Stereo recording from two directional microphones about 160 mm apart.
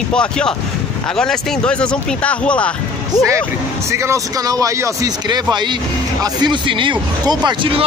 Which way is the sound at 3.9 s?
20° right (ahead or behind).